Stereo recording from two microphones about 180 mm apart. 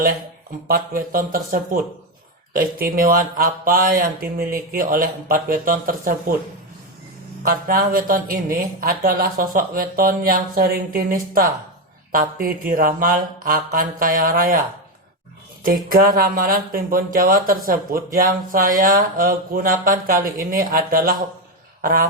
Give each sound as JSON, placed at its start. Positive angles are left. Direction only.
{"t": 0.7, "sound": "speech", "side_deg": -50}
{"t": 7.4, "sound": "speech", "side_deg": -55}
{"t": 15.6, "sound": "speech", "side_deg": -50}
{"t": 21.8, "sound": "a sound", "side_deg": -50}